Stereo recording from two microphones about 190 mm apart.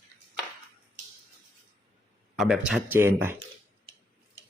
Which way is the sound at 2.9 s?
10° right (ahead or behind).